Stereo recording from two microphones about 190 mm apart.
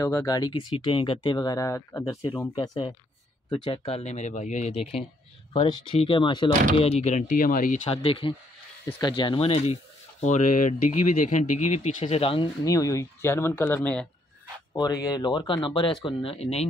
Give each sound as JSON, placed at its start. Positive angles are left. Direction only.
{"t": 0.0, "sound": "speech", "side_deg": 15}
{"t": 7.9, "sound": "speech", "side_deg": 30}
{"t": 12.6, "sound": "speech", "side_deg": 15}
{"t": 14.7, "sound": "speech", "side_deg": 20}